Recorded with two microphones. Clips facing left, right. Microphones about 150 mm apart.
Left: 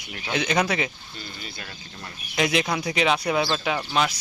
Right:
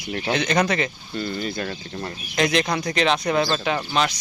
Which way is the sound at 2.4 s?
5° left (ahead or behind).